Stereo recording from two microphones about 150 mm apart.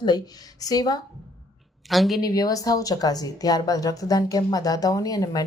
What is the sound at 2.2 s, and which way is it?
Speech, 25° left (ahead or behind).